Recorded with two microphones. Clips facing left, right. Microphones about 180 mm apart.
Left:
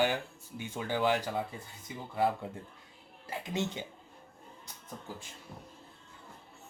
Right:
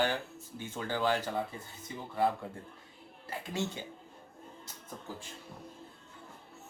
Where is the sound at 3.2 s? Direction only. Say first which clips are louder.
Left 1 dB; 20° left (ahead or behind).